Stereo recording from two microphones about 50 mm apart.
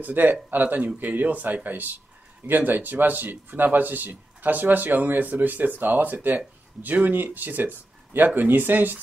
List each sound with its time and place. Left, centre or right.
0.0 s speech: right